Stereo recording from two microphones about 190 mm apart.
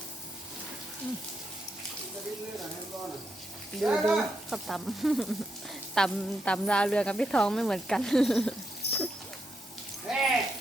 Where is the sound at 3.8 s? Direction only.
Centre (ahead or behind).